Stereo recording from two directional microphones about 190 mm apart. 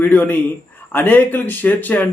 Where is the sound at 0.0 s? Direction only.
10° left (ahead or behind).